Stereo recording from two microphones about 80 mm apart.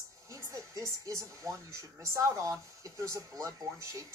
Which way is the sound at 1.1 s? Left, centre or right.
Right.